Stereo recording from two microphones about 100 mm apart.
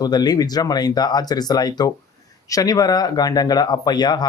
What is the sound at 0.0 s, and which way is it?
Speech, 45° left (ahead or behind).